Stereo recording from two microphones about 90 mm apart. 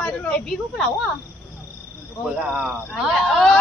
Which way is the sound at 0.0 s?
15° left (ahead or behind).